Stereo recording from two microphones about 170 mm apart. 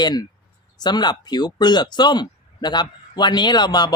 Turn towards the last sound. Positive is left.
turn(degrees=25)  # may be behind; listen again after turning